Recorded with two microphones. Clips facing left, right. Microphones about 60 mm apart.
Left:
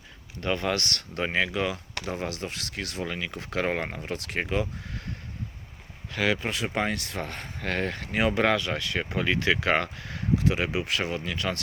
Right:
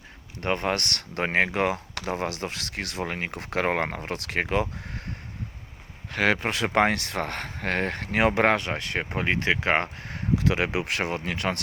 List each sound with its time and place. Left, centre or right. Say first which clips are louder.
0.4 s speech: right 1 dB; right
6.1 s speech: right 3 dB; right
7.6 s speech: right 2 dB; right
10.4 s speech: right 2 dB; right